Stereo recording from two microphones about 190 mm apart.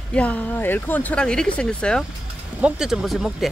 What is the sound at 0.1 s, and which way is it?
Speech, 5° left (ahead or behind).